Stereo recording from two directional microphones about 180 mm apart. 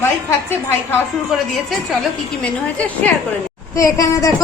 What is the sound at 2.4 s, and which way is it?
Speech, 5° left (ahead or behind).